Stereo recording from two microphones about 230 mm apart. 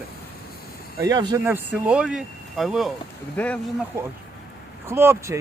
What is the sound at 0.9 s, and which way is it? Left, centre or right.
Speech, centre.